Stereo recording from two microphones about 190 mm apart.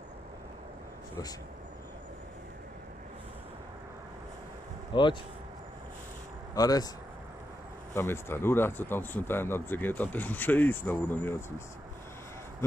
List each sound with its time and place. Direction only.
4.9 s speech: 25° left (ahead or behind)
6.5 s speech: 20° left (ahead or behind)
7.9 s speech: 10° left (ahead or behind)